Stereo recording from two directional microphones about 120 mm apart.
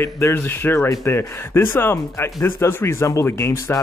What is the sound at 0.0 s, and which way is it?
Speech, 20° left (ahead or behind).